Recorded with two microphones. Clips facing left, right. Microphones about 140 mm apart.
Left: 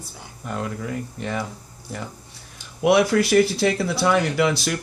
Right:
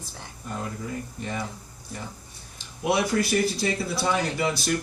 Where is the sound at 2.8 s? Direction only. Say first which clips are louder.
Left 7 dB; 80° left.